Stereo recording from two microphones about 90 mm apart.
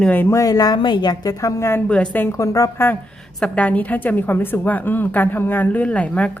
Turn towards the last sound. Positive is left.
turn(degrees=15)  # may be behind; listen again after turning